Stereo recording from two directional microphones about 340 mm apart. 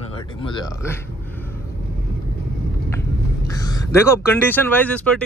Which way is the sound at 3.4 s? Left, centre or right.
Centre.